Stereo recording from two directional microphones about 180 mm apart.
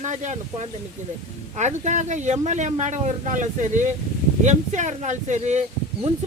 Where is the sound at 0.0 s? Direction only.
40° right (ahead or behind).